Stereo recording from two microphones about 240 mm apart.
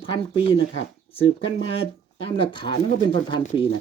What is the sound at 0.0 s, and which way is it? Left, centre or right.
Speech, left.